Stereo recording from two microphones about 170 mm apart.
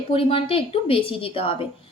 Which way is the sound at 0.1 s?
35° left (ahead or behind).